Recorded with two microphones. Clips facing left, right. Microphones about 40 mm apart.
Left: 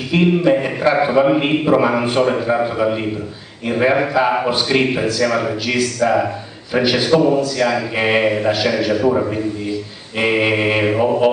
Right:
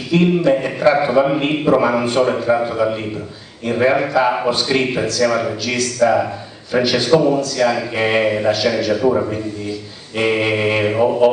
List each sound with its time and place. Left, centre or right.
0.1 s a man's voice: centre